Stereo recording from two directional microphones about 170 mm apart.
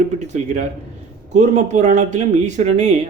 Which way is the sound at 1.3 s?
45° right (ahead or behind).